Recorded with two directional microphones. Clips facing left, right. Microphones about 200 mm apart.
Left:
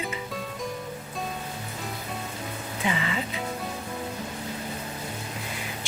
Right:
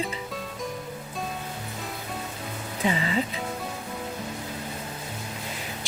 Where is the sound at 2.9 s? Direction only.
35° right (ahead or behind).